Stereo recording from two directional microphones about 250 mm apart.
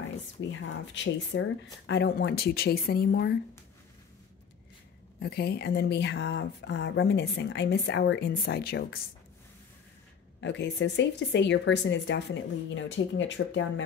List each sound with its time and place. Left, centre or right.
0.4 s speech: left
5.2 s speech: left
10.4 s speech: left